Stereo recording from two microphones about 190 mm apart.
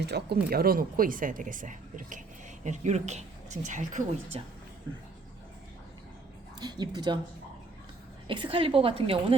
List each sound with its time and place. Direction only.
0.0 s a woman's voice: 60° right (ahead or behind); by 4.4 s 40° right (ahead or behind)
6.6 s a woman's voice: 20° right (ahead or behind)
8.3 s a woman's voice: 25° right (ahead or behind)